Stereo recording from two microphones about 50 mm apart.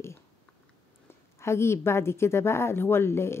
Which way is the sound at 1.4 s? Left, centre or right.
Left.